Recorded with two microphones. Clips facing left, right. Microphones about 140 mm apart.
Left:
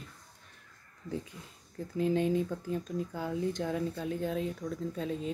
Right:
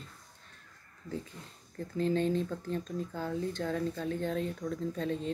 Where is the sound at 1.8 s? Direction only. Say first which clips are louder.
Left 1 dB; 10° left (ahead or behind).